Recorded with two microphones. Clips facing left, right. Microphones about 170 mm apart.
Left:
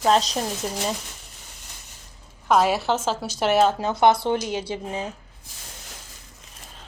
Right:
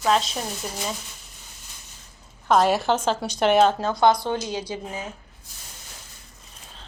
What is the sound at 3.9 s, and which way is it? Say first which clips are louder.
Speech: left 1 dB; 25° left (ahead or behind).